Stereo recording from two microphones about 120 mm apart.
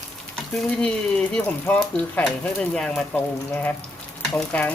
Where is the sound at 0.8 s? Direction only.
5° left (ahead or behind).